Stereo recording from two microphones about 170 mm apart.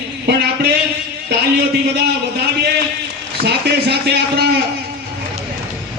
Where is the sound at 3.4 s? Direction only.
75° right (ahead or behind).